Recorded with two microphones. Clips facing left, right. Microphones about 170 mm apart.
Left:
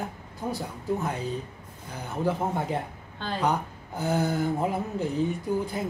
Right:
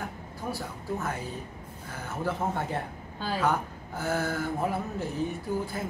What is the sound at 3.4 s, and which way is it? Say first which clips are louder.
A woman's voice: left 2 dB; 20° left (ahead or behind).